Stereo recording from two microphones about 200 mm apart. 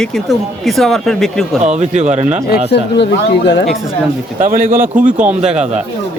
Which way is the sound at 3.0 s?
60° left (ahead or behind).